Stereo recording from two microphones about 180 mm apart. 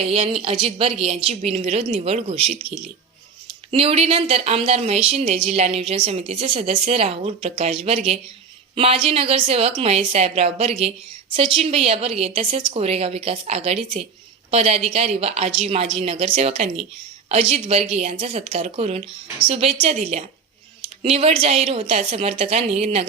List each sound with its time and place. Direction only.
0.1 s a woman's voice: 35° right (ahead or behind)